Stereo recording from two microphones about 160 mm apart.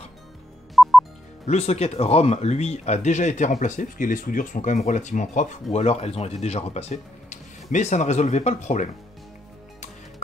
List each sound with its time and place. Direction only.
0.8 s music: centre (ahead or behind)
1.4 s speech: 40° left (ahead or behind)